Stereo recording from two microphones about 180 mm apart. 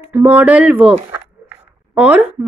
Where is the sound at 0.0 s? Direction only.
10° right (ahead or behind).